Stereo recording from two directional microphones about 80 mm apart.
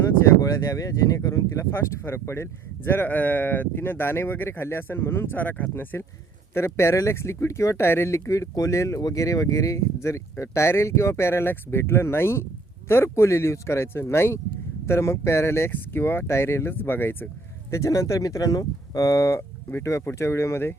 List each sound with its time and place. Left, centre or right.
0.4 s speech: left
6.7 s speech: left
17.7 s speech: left